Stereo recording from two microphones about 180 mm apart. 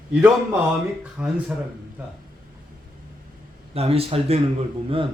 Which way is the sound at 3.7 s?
35° right (ahead or behind).